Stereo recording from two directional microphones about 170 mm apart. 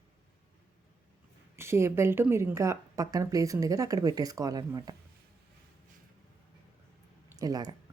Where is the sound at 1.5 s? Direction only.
15° right (ahead or behind).